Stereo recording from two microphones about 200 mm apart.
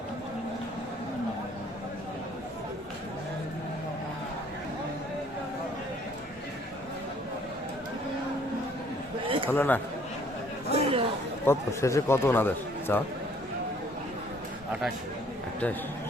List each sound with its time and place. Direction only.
9.5 s speech: 10° left (ahead or behind)
10.7 s chatter: 30° right (ahead or behind)
11.4 s speech: 15° left (ahead or behind)